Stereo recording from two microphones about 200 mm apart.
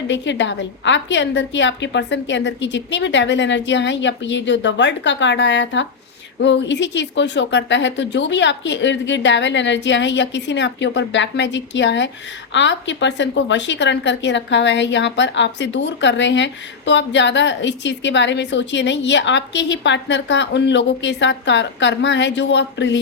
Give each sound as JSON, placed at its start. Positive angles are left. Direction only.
{"t": 0.1, "sound": "a woman's voice", "side_deg": 65}